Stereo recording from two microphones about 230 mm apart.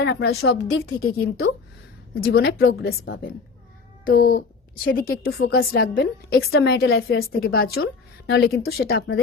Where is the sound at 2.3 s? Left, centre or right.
Left.